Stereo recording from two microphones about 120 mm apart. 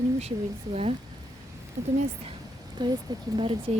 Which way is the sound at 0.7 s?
60° right (ahead or behind).